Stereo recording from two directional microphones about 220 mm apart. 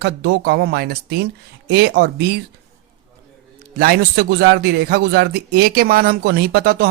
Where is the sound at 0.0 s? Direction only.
50° right (ahead or behind).